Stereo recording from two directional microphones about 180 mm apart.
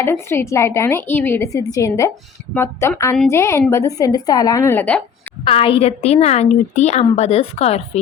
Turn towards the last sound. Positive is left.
turn(degrees=35)  # may be behind; listen again after turning